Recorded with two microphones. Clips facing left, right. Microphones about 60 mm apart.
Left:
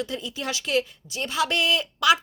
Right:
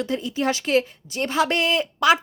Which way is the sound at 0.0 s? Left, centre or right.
Right.